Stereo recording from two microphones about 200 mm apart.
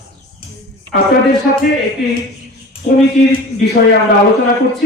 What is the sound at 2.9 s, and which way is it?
Speech, 35° left (ahead or behind).